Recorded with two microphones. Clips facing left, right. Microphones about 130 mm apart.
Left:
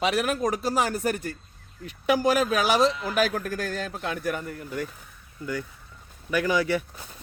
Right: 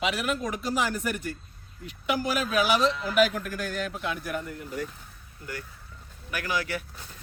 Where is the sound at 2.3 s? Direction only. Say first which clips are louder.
Left 2 dB; 45° left (ahead or behind).